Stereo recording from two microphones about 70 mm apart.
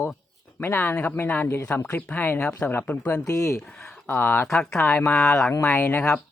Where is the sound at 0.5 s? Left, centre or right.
Left.